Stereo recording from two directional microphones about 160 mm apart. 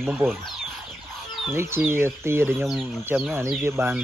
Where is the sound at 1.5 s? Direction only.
15° right (ahead or behind).